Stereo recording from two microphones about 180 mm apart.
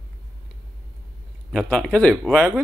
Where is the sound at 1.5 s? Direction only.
5° left (ahead or behind).